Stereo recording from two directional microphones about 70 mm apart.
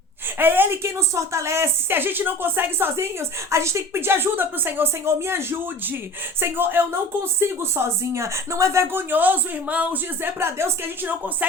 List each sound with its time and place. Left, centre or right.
0.3 s a woman's voice: right
10.2 s a woman's voice: right